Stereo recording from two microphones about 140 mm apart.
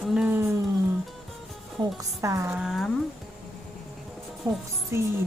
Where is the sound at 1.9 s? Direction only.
20° right (ahead or behind).